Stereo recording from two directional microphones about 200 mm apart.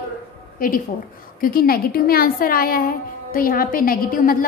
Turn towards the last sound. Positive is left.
turn(degrees=45)  # may be behind; listen again after turning